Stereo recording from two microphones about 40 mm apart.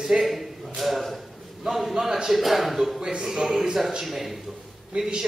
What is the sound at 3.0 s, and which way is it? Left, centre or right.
Speech, centre.